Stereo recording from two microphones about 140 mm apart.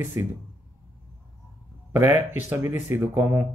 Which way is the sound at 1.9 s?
15° right (ahead or behind).